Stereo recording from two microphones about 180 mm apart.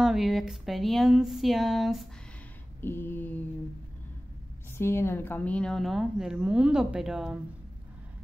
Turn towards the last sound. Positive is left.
turn(degrees=-5)  # may be behind; listen again after turning